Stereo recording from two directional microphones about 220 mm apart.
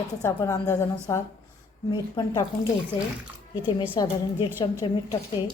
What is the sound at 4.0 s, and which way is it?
A woman's voice, 15° left (ahead or behind).